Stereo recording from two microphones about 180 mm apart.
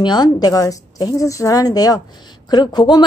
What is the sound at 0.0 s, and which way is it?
A woman's voice, 25° left (ahead or behind).